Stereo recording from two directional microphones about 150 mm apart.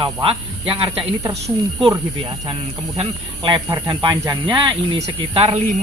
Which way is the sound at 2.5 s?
35° right (ahead or behind).